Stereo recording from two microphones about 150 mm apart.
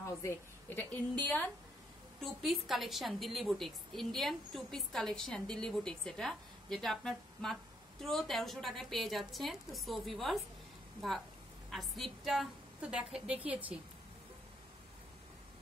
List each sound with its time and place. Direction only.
0.0 s a woman's voice: 20° left (ahead or behind)
2.2 s a woman's voice: centre (ahead or behind)